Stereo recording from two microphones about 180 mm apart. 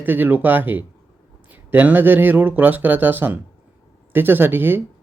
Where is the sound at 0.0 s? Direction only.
10° right (ahead or behind).